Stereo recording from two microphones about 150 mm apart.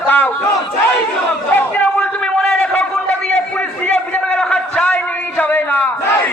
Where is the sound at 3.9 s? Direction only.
10° left (ahead or behind).